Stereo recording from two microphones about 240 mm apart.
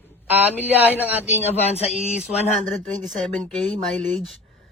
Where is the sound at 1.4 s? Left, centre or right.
Left.